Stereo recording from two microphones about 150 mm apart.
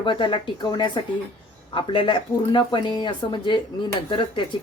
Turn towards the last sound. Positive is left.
turn(degrees=35)  # may be behind; listen again after turning